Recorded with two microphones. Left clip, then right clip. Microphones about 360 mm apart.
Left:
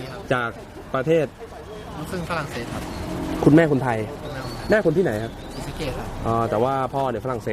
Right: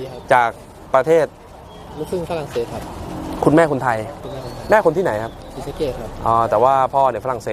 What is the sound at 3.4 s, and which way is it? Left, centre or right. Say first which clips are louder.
Speech: right 3 dB; right.